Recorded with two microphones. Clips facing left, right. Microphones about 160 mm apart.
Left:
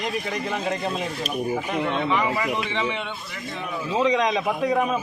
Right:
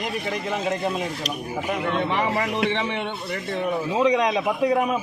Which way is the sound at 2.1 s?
65° right (ahead or behind).